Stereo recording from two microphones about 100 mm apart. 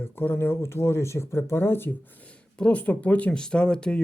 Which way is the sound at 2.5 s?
10° left (ahead or behind).